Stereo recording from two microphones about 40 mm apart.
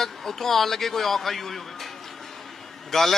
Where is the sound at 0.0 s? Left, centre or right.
Centre.